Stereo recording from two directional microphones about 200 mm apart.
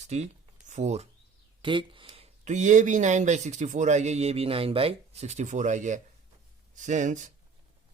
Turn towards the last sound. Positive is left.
turn(degrees=-40)  # may be behind; listen again after turning